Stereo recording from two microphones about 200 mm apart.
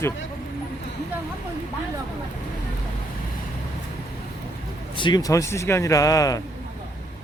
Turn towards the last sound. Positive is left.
turn(degrees=15)  # may be behind; listen again after turning